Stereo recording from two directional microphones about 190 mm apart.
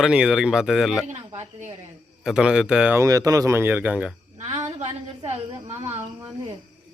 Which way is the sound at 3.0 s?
20° right (ahead or behind).